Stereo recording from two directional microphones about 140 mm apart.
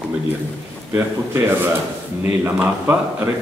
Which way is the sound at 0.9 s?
20° right (ahead or behind).